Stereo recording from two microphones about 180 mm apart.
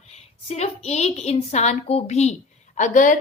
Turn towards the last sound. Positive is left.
turn(degrees=45)  # may be behind; listen again after turning